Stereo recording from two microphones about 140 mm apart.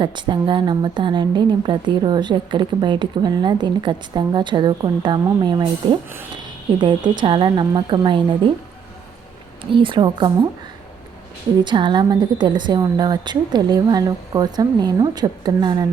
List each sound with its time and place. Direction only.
0.0 s a woman's voice: 35° right (ahead or behind)
9.7 s a woman's voice: 35° right (ahead or behind)
11.6 s a woman's voice: 35° right (ahead or behind)